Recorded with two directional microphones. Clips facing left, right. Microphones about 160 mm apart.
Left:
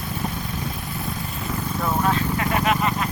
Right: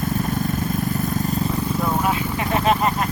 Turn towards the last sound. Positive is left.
turn(degrees=-35)  # may be behind; listen again after turning